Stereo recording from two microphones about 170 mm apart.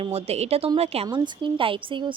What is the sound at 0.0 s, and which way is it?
Speech, 35° right (ahead or behind).